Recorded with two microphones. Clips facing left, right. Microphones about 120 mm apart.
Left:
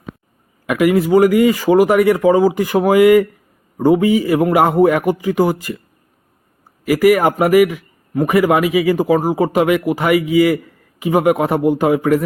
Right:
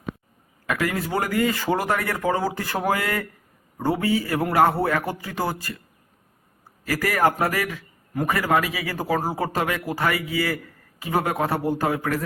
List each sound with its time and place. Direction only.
0.7 s a man's voice: 15° left (ahead or behind)
6.8 s a man's voice: 15° left (ahead or behind)